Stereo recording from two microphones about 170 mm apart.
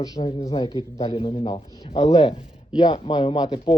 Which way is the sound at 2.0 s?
35° left (ahead or behind).